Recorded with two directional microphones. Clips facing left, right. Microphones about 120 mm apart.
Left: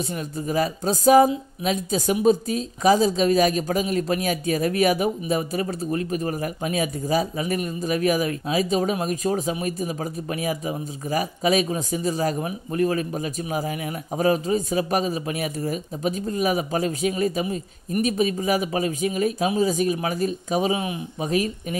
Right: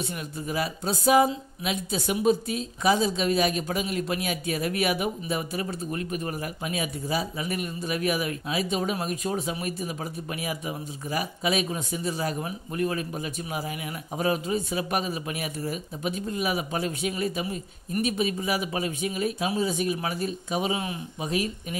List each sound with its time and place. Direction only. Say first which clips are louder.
0.0 s speech: left 5 dB; 40° left (ahead or behind)
20.7 s speech: left 4 dB; 20° left (ahead or behind)
21.2 s speech: left 5 dB; 40° left (ahead or behind)